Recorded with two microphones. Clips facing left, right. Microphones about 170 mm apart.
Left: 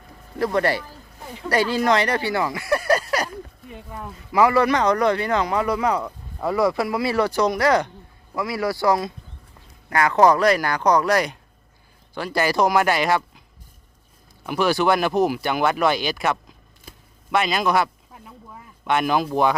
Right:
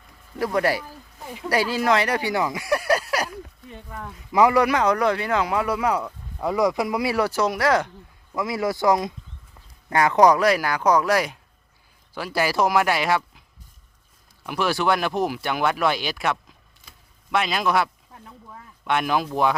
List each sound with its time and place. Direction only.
0.3 s speech: 10° right (ahead or behind)
3.7 s speech: 10° left (ahead or behind)
4.3 s speech: 20° right (ahead or behind); by 7.9 s centre (ahead or behind)
8.4 s speech: 20° right (ahead or behind); by 13.4 s centre (ahead or behind)
14.4 s speech: centre (ahead or behind)